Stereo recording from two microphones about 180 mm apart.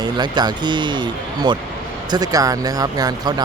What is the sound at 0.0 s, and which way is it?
Speech, 25° right (ahead or behind).